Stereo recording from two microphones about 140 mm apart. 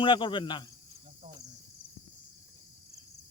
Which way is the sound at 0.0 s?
35° left (ahead or behind).